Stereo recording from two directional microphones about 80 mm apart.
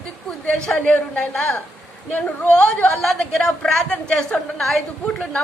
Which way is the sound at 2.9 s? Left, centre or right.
Centre.